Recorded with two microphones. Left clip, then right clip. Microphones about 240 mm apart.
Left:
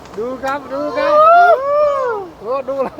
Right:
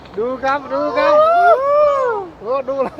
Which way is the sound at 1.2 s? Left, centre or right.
Centre.